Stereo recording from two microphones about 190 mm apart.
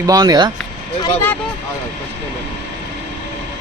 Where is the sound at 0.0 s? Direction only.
20° right (ahead or behind).